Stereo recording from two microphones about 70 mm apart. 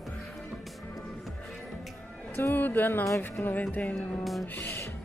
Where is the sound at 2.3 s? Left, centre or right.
Left.